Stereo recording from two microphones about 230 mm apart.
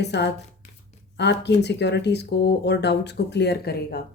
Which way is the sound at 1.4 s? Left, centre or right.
Left.